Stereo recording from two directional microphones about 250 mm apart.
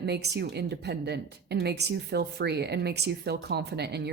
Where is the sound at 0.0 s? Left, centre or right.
Right.